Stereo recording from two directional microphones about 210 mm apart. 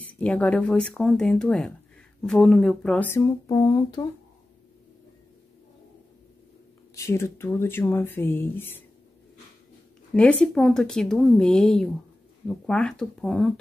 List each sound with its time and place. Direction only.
0.0 s speech: 5° left (ahead or behind)
7.0 s speech: 15° left (ahead or behind)
10.4 s speech: 5° left (ahead or behind)